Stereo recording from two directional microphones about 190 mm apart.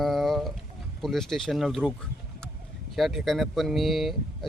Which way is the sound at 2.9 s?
Centre (ahead or behind).